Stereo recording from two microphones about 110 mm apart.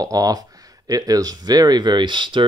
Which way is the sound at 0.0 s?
35° right (ahead or behind).